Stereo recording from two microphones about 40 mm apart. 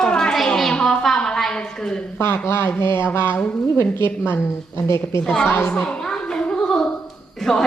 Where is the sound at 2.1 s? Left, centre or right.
Left.